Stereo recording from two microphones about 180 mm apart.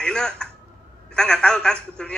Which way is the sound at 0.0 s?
5° left (ahead or behind).